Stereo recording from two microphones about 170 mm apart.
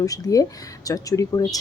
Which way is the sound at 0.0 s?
20° left (ahead or behind).